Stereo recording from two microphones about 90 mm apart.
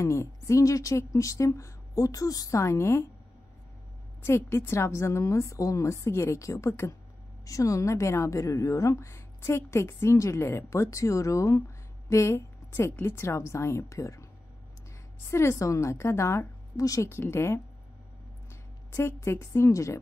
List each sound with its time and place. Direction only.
0.0 s a woman's voice: 35° left (ahead or behind)
4.2 s a woman's voice: 30° left (ahead or behind)
15.2 s a woman's voice: 30° left (ahead or behind)
17.1 s a woman's voice: 25° left (ahead or behind)